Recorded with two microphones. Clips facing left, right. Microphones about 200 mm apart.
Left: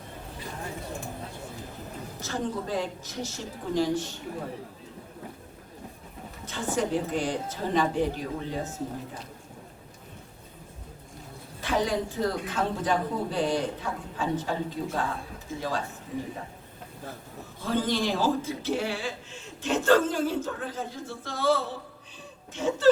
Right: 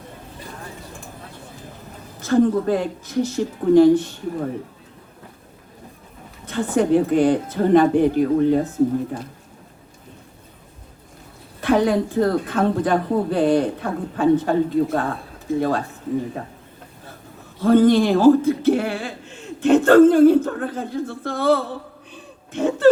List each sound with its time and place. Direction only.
2.2 s a woman's voice: 55° right (ahead or behind)
6.4 s a woman's voice: 55° right (ahead or behind)
11.6 s a woman's voice: 60° right (ahead or behind)
17.6 s a woman's voice: 55° right (ahead or behind)
22.1 s a sound: 55° right (ahead or behind)